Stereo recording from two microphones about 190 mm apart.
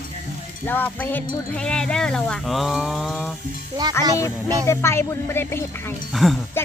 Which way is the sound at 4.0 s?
15° left (ahead or behind).